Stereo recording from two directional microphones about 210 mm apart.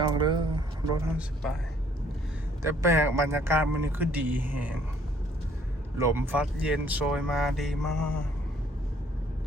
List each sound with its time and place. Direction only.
0.2 s a sound: 20° right (ahead or behind)
1.1 s speech: centre (ahead or behind)
2.6 s a man's voice: 15° right (ahead or behind)
6.0 s speech: 10° right (ahead or behind)